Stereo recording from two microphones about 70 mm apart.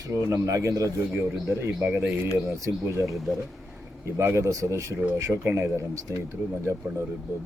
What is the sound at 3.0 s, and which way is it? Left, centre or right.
Speech, centre.